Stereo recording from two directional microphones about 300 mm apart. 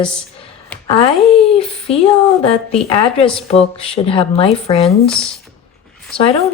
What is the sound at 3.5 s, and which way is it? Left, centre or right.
Speech, centre.